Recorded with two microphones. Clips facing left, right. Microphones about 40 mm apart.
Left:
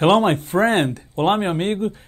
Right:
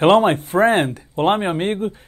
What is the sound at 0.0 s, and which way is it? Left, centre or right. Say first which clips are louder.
Speech: right 2 dB; centre.